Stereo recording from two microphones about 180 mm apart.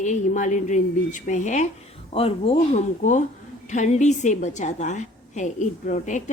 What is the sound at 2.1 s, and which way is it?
A woman's voice, 30° left (ahead or behind).